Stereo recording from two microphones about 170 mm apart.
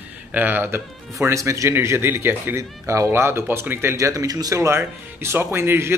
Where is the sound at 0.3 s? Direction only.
10° right (ahead or behind).